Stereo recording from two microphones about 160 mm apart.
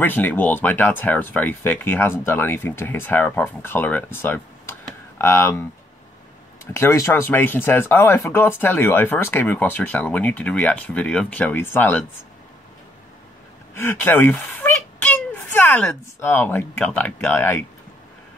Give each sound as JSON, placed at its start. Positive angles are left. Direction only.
{"t": 0.0, "sound": "speech", "side_deg": 10}
{"t": 13.7, "sound": "a sound", "side_deg": 15}
{"t": 16.2, "sound": "speech", "side_deg": 15}